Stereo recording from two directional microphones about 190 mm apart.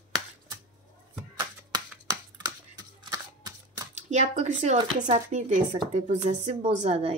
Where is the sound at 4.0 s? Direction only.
35° right (ahead or behind).